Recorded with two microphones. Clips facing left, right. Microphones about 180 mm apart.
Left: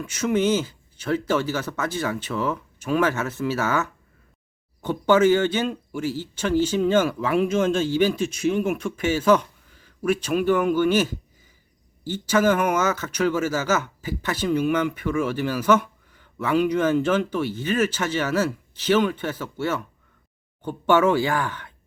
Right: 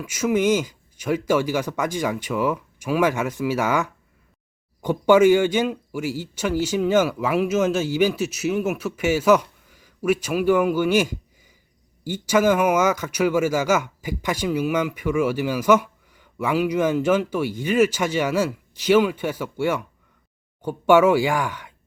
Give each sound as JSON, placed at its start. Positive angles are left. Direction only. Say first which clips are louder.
{"t": 0.0, "sound": "speech", "louder": "right 1 dB", "side_deg": -10}